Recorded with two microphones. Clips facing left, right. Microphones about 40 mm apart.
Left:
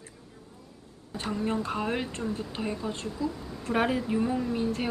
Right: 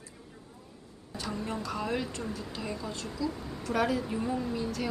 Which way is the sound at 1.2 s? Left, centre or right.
Left.